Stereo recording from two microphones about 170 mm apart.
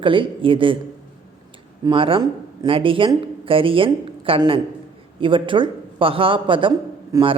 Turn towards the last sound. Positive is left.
turn(degrees=-30)  # may be behind; listen again after turning